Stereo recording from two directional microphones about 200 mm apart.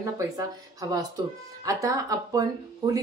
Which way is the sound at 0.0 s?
15° right (ahead or behind).